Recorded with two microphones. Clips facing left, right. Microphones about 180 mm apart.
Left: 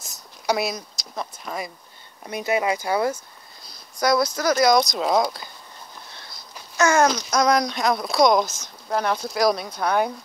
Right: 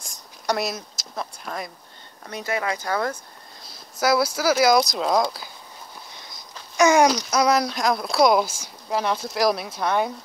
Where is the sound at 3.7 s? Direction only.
5° right (ahead or behind).